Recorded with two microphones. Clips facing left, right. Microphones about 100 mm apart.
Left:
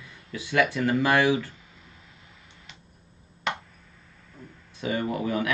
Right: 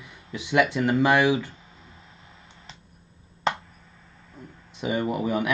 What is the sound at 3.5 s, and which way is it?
Chop, 35° right (ahead or behind).